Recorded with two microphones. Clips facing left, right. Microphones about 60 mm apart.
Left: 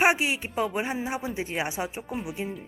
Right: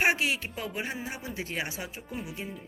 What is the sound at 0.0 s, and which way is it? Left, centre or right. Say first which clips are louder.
Speech: left 3 dB; centre.